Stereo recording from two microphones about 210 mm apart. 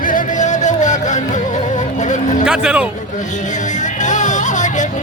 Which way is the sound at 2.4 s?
5° right (ahead or behind).